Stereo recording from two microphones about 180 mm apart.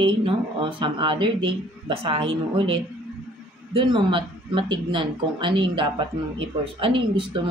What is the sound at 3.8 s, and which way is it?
Speech, 25° right (ahead or behind).